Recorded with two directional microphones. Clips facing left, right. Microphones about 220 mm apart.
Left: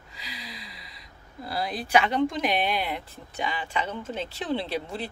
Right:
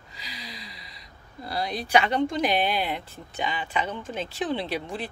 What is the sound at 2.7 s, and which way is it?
Speech, 30° right (ahead or behind).